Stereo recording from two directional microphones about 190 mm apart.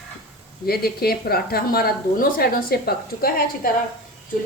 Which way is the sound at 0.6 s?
55° left (ahead or behind).